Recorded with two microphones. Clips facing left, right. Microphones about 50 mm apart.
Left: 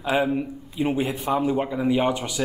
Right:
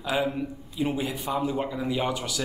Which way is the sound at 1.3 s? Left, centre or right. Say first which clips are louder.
Left 4 dB; centre.